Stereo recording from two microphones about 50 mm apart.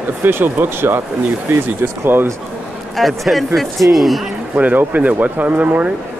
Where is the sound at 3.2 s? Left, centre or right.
Centre.